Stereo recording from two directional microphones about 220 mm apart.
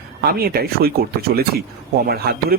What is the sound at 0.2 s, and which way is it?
Speech, 45° right (ahead or behind).